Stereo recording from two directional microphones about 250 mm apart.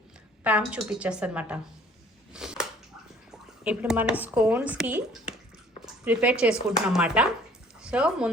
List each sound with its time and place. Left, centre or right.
0.4 s speech: centre
2.3 s a sound: centre
3.6 s speech: centre